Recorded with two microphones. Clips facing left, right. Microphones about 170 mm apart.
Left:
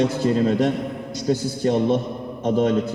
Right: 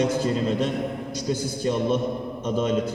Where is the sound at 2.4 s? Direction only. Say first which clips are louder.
Left 6 dB; 65° left (ahead or behind).